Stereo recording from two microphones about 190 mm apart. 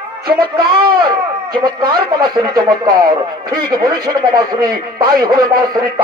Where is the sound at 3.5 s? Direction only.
20° right (ahead or behind).